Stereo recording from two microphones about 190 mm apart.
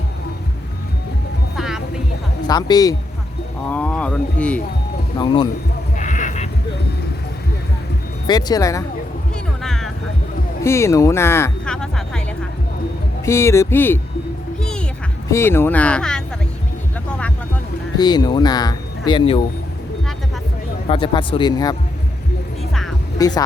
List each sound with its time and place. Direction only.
1.5 s music: centre (ahead or behind)
2.5 s speech: 20° left (ahead or behind)
3.7 s speech: 5° left (ahead or behind)
5.1 s speech: 25° left (ahead or behind)
6.0 s a sound: 40° left (ahead or behind)
8.3 s speech: 20° left (ahead or behind)
9.6 s music: centre (ahead or behind)
10.6 s a sound: 15° left (ahead or behind)
13.2 s speech: 15° left (ahead or behind)
14.6 s music: 5° left (ahead or behind)
15.3 s speech: 10° left (ahead or behind)
17.9 s speech: 20° left (ahead or behind)
20.9 s speech: 25° left (ahead or behind)
23.1 s speech: 20° left (ahead or behind)